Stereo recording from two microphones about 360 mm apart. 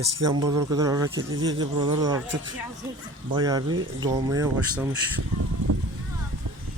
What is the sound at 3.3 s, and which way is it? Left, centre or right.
Speech, centre.